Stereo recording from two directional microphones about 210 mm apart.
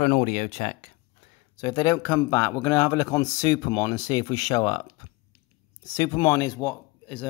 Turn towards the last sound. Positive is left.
turn(degrees=10)  # may be behind; listen again after turning